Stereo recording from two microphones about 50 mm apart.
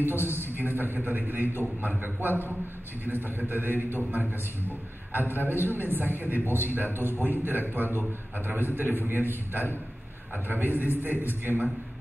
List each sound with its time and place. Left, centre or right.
0.0 s a man's voice: right